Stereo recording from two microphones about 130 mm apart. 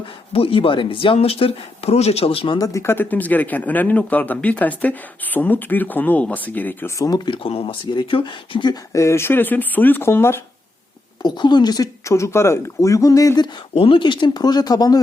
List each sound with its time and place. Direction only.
0.3 s speech: 45° left (ahead or behind)
2.6 s speech: 20° left (ahead or behind)
7.0 s speech: 30° left (ahead or behind)
7.3 s speech: 45° left (ahead or behind); by 10.4 s 20° left (ahead or behind)
11.2 s speech: 35° left (ahead or behind)
13.7 s speech: 45° left (ahead or behind)